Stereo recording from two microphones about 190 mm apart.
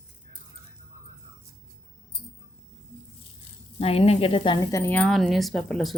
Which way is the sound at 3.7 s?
30° left (ahead or behind).